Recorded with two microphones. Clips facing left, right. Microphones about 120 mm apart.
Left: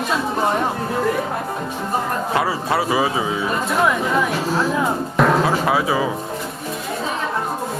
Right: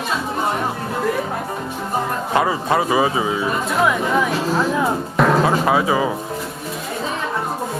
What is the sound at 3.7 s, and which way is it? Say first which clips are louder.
Speech: even; centre (ahead or behind).